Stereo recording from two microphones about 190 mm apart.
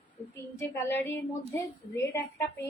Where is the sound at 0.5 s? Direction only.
10° left (ahead or behind).